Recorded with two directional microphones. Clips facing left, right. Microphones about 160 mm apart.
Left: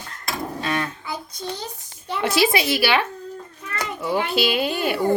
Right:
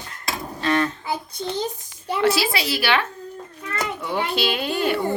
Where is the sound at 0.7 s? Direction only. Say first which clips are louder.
Right 6 dB; 10° left (ahead or behind).